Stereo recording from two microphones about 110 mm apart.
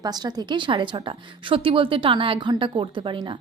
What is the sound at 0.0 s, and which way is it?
A woman's voice, 40° right (ahead or behind).